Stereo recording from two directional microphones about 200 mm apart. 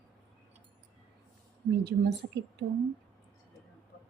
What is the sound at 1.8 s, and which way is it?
Speech, 55° right (ahead or behind).